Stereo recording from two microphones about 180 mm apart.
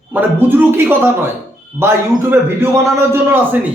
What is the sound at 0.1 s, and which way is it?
A man's voice, 10° right (ahead or behind).